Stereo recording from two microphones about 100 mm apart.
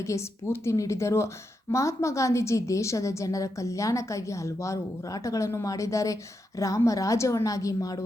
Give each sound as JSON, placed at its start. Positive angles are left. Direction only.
{"t": 0.0, "sound": "a woman's voice", "side_deg": 30}